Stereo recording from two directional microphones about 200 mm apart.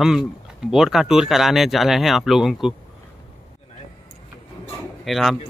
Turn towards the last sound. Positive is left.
turn(degrees=0)  # may be behind; listen again after turning